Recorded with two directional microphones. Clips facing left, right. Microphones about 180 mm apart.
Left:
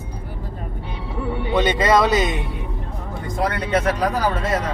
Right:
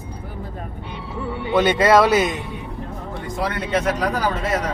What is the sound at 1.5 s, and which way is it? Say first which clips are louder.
Speech: right 3 dB; 5° right (ahead or behind).